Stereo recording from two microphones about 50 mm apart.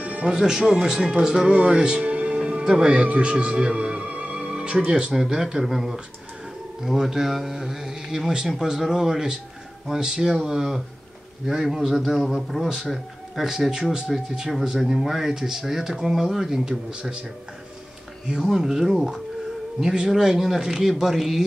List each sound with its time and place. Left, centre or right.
0.0 s music: right
0.3 s speech: centre
1.5 s music: right
4.8 s speech: centre
18.4 s speech: centre